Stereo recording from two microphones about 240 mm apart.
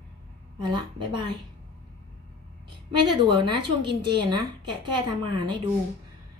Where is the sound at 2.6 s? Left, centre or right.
Centre.